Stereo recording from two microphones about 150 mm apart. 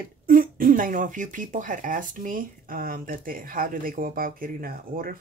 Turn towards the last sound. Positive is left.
turn(degrees=-70)  # may be behind; listen again after turning